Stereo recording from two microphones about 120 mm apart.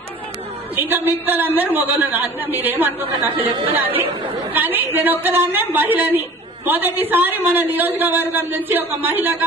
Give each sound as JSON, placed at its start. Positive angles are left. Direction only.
{"t": 0.7, "sound": "a man's voice", "side_deg": -15}